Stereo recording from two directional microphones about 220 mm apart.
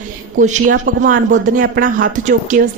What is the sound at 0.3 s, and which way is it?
Speech, 35° right (ahead or behind).